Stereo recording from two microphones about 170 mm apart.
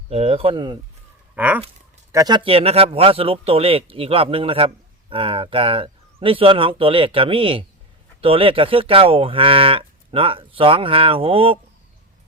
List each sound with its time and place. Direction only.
0.1 s speech: 35° right (ahead or behind)
1.4 s a sound: 10° right (ahead or behind)
2.1 s speech: 25° right (ahead or behind)